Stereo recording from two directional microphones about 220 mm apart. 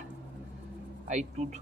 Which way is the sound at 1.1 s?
30° right (ahead or behind).